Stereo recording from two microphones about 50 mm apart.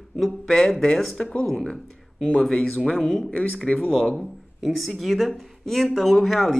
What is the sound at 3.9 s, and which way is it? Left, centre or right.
Speech, centre.